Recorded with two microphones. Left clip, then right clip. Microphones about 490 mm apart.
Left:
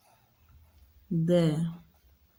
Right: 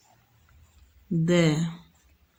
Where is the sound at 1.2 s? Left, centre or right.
Left.